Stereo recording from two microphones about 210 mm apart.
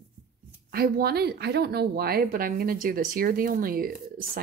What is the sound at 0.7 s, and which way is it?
A woman's voice, 45° right (ahead or behind).